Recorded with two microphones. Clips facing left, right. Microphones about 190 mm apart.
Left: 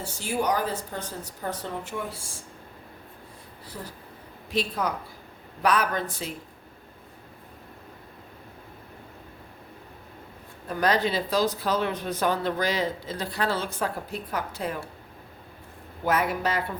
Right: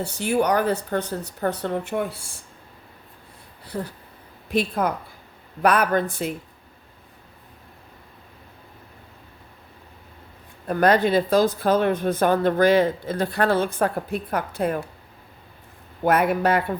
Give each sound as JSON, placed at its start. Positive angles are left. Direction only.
{"t": 0.0, "sound": "speech", "side_deg": -65}
{"t": 3.7, "sound": "a woman's voice", "side_deg": -60}
{"t": 10.7, "sound": "speech", "side_deg": -55}
{"t": 16.0, "sound": "speech", "side_deg": -55}